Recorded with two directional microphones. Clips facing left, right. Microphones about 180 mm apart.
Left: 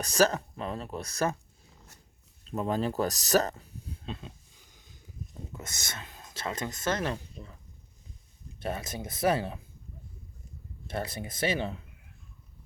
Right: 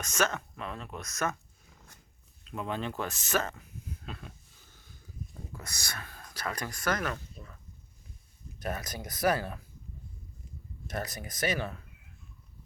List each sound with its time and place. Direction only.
0.0 s speech: 35° left (ahead or behind)
2.4 s speech: 35° left (ahead or behind)
10.8 s speech: 30° left (ahead or behind)